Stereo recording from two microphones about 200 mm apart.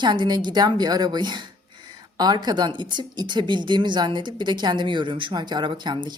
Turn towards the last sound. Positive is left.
turn(degrees=-25)  # may be behind; listen again after turning